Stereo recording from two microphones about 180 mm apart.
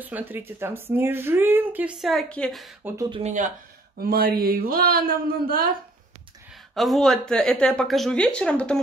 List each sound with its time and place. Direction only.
0.0 s a woman's voice: 10° right (ahead or behind)
3.1 s speech: 40° right (ahead or behind)
4.0 s speech: 55° right (ahead or behind)
6.7 s speech: centre (ahead or behind)